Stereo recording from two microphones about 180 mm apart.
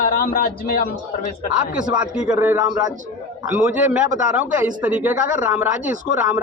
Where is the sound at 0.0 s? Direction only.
50° left (ahead or behind).